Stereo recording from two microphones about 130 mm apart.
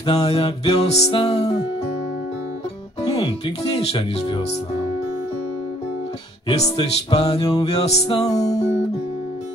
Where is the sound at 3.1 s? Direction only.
50° left (ahead or behind).